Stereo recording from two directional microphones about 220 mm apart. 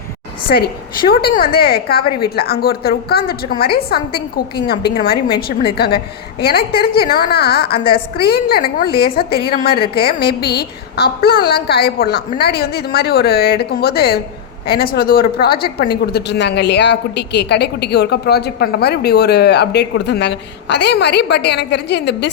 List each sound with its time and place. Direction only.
1.1 s a woman's voice: 45° left (ahead or behind)